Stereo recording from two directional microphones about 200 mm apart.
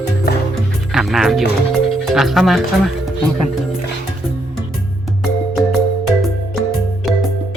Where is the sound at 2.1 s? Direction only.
Centre (ahead or behind).